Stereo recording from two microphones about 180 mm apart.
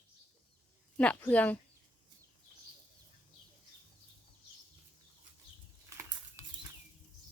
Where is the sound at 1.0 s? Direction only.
5° left (ahead or behind).